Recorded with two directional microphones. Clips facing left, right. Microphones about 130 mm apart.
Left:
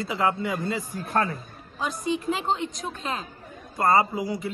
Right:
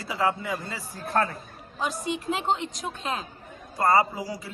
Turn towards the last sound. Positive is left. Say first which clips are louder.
# left 1 dB
turn(degrees=25)  # may be behind; listen again after turning